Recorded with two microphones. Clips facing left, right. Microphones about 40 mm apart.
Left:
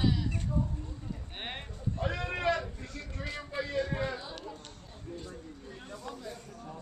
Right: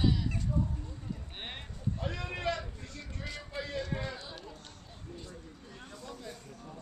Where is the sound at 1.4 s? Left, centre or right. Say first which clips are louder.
Left 4 dB; centre.